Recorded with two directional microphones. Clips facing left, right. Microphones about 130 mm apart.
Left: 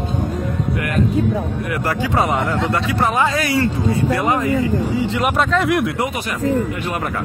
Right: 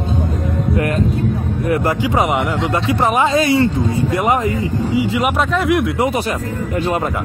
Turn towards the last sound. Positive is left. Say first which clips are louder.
# right 1 dB
turn(degrees=0)  # may be behind; listen again after turning